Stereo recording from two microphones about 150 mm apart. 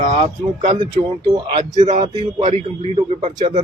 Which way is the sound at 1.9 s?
50° right (ahead or behind).